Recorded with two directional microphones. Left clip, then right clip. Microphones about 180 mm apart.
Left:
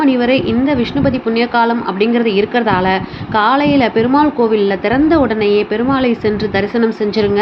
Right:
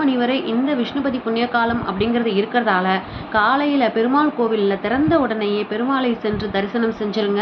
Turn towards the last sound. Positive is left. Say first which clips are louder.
# left 6 dB
turn(degrees=30)  # may be behind; listen again after turning